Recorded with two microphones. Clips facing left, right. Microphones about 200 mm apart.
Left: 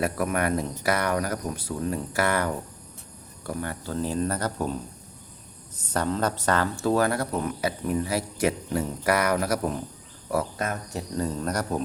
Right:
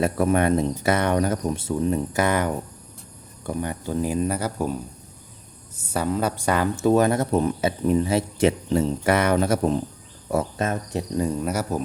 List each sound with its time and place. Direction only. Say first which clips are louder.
0.0 s speech: right 5 dB; 25° right (ahead or behind); by 4.8 s 10° right (ahead or behind)
5.8 s speech: right 2 dB; 10° right (ahead or behind); by 11.0 s 25° right (ahead or behind)
11.2 s speech: right 2 dB; 10° right (ahead or behind)